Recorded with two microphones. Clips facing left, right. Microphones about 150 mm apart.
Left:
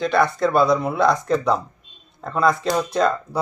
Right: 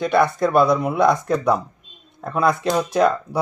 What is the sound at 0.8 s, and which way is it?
Speech, 15° right (ahead or behind).